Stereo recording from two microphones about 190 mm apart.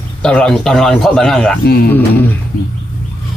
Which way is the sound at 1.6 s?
55° left (ahead or behind).